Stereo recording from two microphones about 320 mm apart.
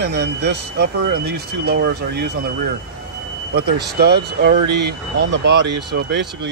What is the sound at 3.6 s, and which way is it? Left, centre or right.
Speech, right.